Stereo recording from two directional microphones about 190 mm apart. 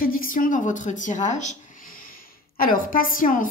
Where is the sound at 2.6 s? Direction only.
50° left (ahead or behind).